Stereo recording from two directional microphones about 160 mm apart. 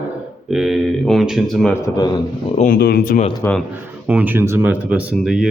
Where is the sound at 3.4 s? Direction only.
15° left (ahead or behind).